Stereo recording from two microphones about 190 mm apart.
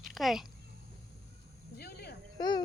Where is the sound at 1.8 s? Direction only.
55° left (ahead or behind).